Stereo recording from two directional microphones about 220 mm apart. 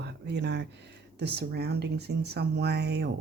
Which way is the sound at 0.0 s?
50° right (ahead or behind).